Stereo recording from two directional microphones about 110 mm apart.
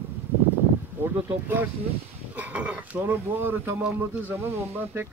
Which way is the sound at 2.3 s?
10° right (ahead or behind).